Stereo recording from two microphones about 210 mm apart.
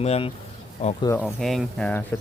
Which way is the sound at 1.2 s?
Centre (ahead or behind).